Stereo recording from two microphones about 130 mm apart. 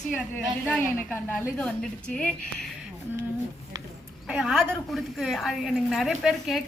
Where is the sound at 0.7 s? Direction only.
10° left (ahead or behind).